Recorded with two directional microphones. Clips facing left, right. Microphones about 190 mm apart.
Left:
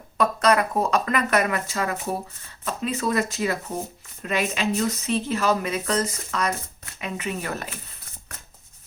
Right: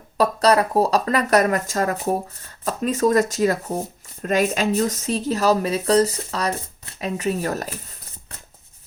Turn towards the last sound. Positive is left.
turn(degrees=-40)  # may be behind; listen again after turning